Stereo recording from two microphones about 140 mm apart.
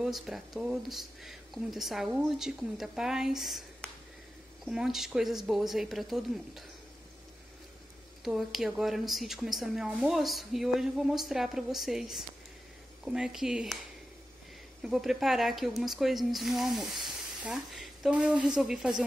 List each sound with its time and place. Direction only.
0.0 s a woman's voice: centre (ahead or behind)
8.2 s a woman's voice: centre (ahead or behind)
14.8 s a woman's voice: centre (ahead or behind)